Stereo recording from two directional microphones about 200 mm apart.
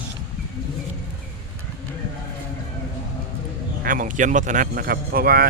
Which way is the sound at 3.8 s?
40° right (ahead or behind).